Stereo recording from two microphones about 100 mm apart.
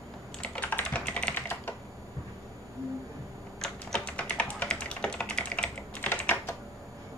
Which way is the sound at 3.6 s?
10° left (ahead or behind).